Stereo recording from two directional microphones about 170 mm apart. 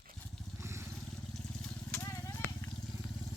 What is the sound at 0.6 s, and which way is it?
Vehicle, 15° right (ahead or behind).